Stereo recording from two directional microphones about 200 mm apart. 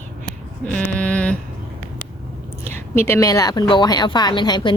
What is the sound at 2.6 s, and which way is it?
A woman's voice, 10° left (ahead or behind).